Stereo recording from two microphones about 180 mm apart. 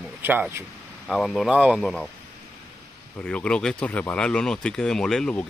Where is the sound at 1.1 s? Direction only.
Centre (ahead or behind).